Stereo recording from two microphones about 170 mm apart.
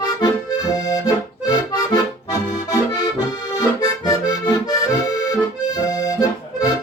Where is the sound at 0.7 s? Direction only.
20° left (ahead or behind).